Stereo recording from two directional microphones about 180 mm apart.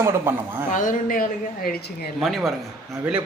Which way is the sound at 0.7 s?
45° left (ahead or behind).